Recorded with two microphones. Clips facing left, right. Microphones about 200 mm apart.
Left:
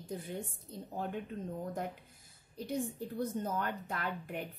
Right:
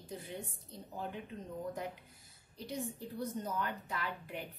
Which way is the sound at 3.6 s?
55° left (ahead or behind).